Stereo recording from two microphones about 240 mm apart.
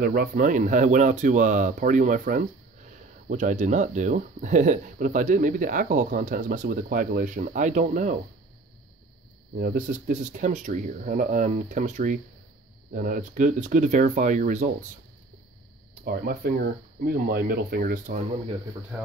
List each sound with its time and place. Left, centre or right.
0.0 s speech: right
9.6 s speech: right
16.0 s speech: right